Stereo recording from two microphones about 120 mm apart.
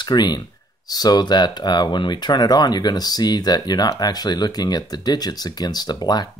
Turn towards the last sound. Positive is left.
turn(degrees=35)  # may be behind; listen again after turning